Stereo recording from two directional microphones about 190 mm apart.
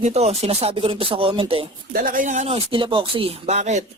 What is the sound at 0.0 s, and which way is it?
Speech, 35° right (ahead or behind).